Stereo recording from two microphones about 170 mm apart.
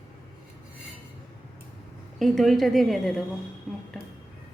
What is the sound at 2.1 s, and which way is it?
A woman's voice, centre (ahead or behind).